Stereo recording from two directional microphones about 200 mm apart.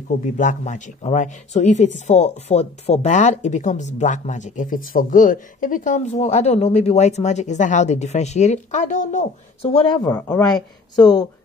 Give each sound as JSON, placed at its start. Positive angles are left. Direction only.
{"t": 0.2, "sound": "speech", "side_deg": 40}
{"t": 10.0, "sound": "speech", "side_deg": 10}